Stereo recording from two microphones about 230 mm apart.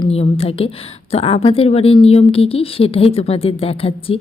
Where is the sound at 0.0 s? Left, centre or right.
Left.